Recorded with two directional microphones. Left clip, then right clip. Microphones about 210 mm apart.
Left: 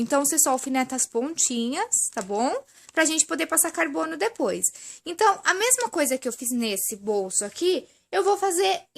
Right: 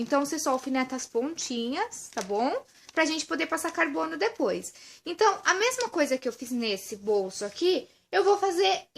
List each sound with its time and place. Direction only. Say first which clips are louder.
0.1 s speech: left 3 dB; 50° left (ahead or behind)